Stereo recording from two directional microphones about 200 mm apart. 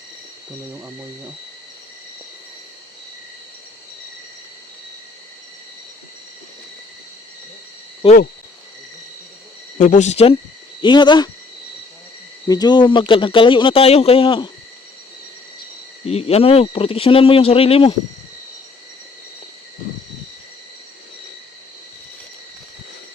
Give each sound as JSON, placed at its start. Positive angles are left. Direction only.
{"t": 9.7, "sound": "speech", "side_deg": 40}
{"t": 12.5, "sound": "speech", "side_deg": 20}
{"t": 16.0, "sound": "speech", "side_deg": 30}